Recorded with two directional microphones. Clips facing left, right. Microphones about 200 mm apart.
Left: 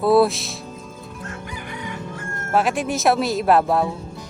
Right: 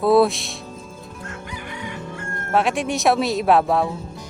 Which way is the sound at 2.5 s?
Centre (ahead or behind).